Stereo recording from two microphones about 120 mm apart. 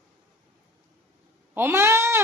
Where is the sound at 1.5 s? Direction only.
20° right (ahead or behind).